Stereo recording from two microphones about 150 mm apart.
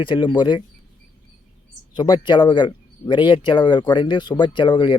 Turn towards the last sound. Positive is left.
turn(degrees=30)  # may be behind; listen again after turning